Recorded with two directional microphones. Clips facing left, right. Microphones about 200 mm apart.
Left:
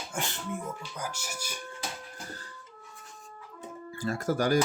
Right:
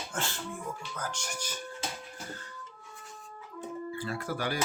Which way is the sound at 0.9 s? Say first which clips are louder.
Even; 10° left (ahead or behind).